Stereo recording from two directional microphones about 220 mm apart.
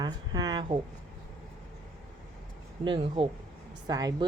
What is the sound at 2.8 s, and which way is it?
Speech, 25° right (ahead or behind).